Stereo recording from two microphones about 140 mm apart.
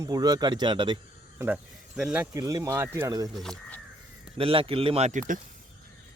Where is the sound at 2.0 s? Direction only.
5° right (ahead or behind).